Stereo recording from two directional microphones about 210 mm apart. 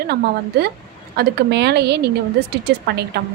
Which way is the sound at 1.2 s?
55° right (ahead or behind).